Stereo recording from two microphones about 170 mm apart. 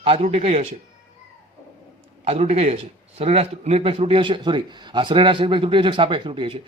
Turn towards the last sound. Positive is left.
turn(degrees=-30)  # may be behind; listen again after turning